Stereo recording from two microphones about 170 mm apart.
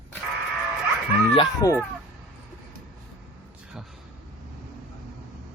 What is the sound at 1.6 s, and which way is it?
Speech, 20° left (ahead or behind).